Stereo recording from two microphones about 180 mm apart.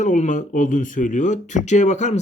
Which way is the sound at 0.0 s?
45° left (ahead or behind).